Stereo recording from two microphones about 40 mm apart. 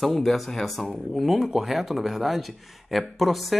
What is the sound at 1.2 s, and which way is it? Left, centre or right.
Speech, centre.